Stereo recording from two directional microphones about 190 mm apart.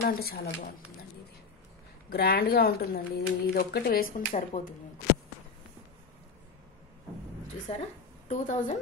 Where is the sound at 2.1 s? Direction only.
55° left (ahead or behind).